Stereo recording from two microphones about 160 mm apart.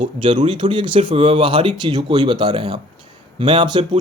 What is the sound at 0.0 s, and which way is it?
A man's voice, 30° right (ahead or behind).